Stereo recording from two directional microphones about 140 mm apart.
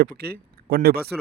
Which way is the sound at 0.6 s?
90° right.